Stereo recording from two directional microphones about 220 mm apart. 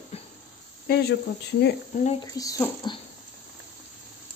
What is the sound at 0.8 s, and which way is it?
Speech, 45° left (ahead or behind).